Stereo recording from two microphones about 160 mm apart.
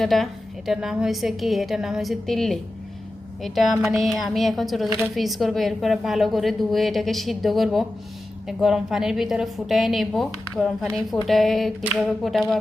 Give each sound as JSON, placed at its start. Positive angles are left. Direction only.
{"t": 0.0, "sound": "speech", "side_deg": 0}